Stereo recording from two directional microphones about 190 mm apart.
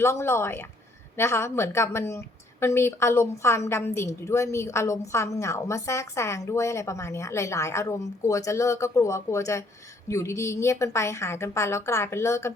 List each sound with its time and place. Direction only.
0.0 s a woman's voice: 15° left (ahead or behind)